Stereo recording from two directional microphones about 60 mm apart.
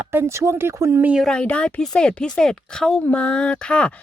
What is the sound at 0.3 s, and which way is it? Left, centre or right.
Speech, right.